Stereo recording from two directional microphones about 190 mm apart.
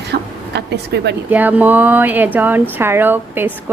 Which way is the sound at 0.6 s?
60° right (ahead or behind).